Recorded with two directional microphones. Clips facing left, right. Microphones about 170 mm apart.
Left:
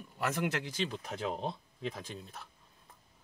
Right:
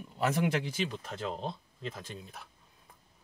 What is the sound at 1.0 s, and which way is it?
Speech, 5° left (ahead or behind).